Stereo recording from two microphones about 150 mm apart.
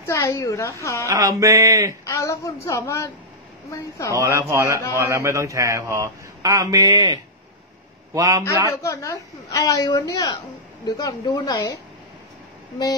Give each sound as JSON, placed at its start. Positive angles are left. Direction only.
{"t": 0.0, "sound": "a woman's voice", "side_deg": 20}
{"t": 1.0, "sound": "a man's voice", "side_deg": -25}
{"t": 2.0, "sound": "a woman's voice", "side_deg": 20}
{"t": 4.1, "sound": "a man's voice", "side_deg": -20}
{"t": 8.6, "sound": "a woman's voice", "side_deg": 20}